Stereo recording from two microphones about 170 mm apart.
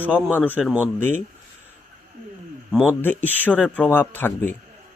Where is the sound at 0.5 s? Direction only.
5° right (ahead or behind).